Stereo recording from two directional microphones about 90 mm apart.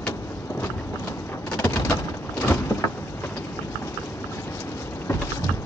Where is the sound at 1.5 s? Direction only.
30° left (ahead or behind).